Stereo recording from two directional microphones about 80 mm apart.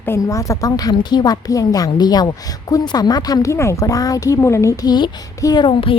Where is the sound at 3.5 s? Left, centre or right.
Left.